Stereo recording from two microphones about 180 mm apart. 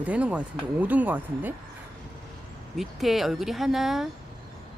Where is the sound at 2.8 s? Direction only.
Centre (ahead or behind).